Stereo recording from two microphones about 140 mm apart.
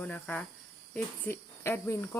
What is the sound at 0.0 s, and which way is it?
Speech, 10° left (ahead or behind).